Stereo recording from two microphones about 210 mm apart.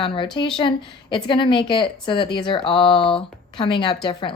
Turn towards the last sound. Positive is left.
turn(degrees=25)  # may be behind; listen again after turning